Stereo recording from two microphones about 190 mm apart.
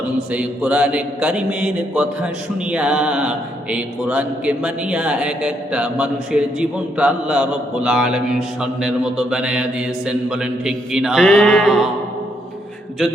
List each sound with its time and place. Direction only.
0.3 s mantra: 5° right (ahead or behind)